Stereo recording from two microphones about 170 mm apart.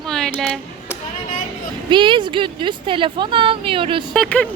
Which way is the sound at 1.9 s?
30° right (ahead or behind).